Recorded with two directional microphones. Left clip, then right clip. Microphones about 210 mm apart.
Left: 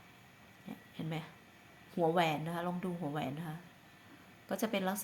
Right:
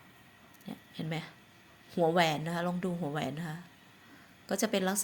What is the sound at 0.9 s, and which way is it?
A woman's voice, 25° right (ahead or behind).